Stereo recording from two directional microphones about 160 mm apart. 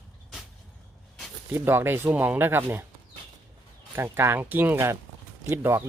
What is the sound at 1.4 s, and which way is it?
Speech, 15° right (ahead or behind).